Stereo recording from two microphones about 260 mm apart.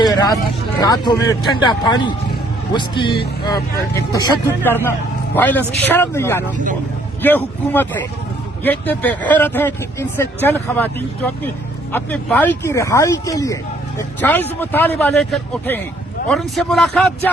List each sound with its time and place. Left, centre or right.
0.8 s speech: centre